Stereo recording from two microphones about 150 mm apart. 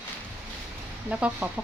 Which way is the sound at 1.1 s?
10° right (ahead or behind).